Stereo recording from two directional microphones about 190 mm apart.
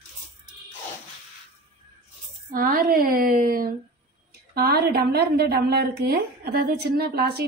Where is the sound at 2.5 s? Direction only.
50° right (ahead or behind).